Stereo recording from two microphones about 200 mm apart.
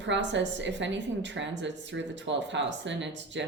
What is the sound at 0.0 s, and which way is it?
A woman's voice, 65° right (ahead or behind).